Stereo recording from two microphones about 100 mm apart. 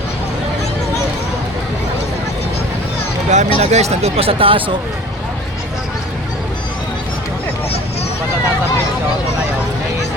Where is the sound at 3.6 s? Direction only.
90° right; by 4.7 s 60° right (ahead or behind).